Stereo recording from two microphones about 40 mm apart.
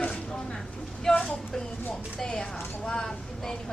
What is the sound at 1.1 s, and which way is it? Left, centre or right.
A woman's voice, centre.